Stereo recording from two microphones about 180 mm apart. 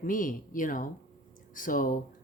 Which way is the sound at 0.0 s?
50° left (ahead or behind).